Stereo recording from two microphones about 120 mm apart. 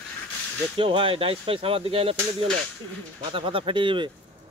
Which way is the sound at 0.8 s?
45° right (ahead or behind).